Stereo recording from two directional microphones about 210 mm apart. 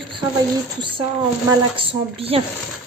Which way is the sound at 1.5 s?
25° right (ahead or behind).